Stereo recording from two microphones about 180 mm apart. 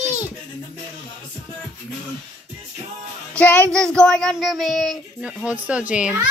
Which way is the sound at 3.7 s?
5° left (ahead or behind).